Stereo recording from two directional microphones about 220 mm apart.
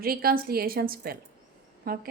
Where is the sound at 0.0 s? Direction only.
45° right (ahead or behind).